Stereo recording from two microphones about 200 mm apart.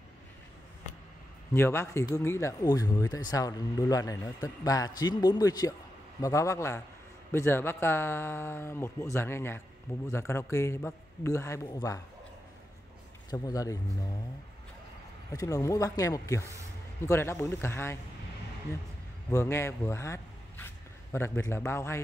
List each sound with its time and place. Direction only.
1.5 s a man's voice: 10° left (ahead or behind)
13.3 s a man's voice: 15° left (ahead or behind)
15.3 s a man's voice: 15° left (ahead or behind)
19.3 s speech: 15° left (ahead or behind)